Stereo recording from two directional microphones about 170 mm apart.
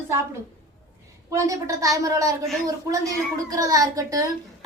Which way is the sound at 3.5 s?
20° right (ahead or behind).